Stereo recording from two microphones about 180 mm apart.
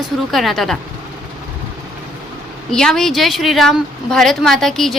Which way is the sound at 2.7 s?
5° left (ahead or behind).